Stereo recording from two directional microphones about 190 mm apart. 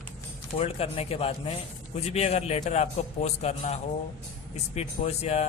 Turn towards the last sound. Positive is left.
turn(degrees=35)  # may be behind; listen again after turning